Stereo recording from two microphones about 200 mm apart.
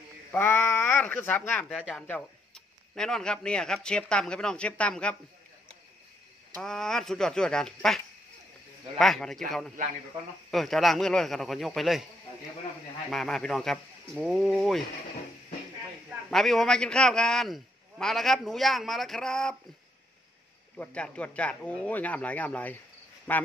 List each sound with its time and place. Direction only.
0.3 s a man's voice: 10° left (ahead or behind)
6.5 s a man's voice: 5° left (ahead or behind)
10.5 s a man's voice: centre (ahead or behind)
13.1 s a man's voice: centre (ahead or behind)
16.1 s a man's voice: centre (ahead or behind)
20.7 s speech: 5° left (ahead or behind)